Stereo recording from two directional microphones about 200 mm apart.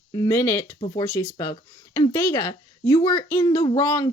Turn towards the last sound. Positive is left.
turn(degrees=15)  # may be behind; listen again after turning